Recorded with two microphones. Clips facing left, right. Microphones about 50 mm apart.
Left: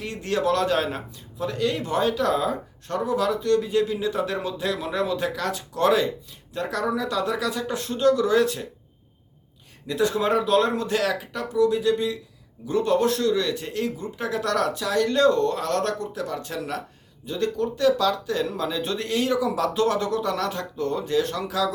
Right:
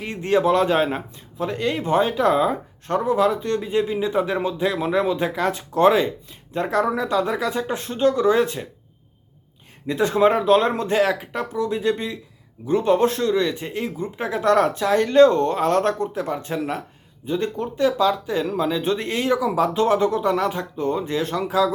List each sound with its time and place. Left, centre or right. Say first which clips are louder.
0.0 s a man's voice: right 5 dB; right
9.8 s a man's voice: right 5 dB; right